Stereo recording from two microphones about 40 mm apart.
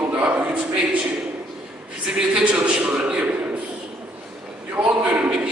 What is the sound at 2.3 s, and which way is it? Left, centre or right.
Speech, right.